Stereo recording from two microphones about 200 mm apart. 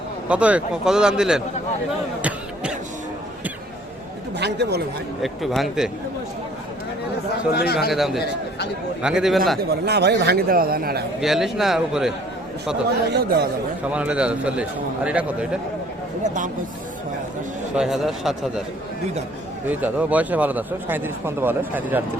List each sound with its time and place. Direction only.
0.3 s a man's voice: 5° right (ahead or behind)
4.4 s speech: 55° right (ahead or behind)
5.2 s a man's voice: centre (ahead or behind)
7.5 s speech: 50° left (ahead or behind)
7.9 s a man's voice: centre (ahead or behind)
8.2 s speech: 55° left (ahead or behind)
9.0 s a man's voice: 5° right (ahead or behind)
9.8 s a man's voice: 55° right (ahead or behind)
11.2 s a man's voice: centre (ahead or behind)
13.1 s speech: 55° right (ahead or behind)
13.9 s a man's voice: 5° right (ahead or behind)
16.2 s speech: 40° right (ahead or behind)
17.7 s a man's voice: centre (ahead or behind)
19.7 s a man's voice: 10° right (ahead or behind)